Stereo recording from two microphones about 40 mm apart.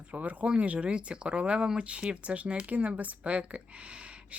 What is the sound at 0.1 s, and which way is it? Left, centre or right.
Speech, right.